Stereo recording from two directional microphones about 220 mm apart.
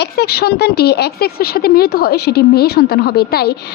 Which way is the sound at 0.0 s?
45° left (ahead or behind).